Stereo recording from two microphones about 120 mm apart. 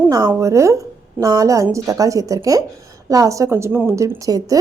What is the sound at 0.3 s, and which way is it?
A woman's voice, 25° right (ahead or behind).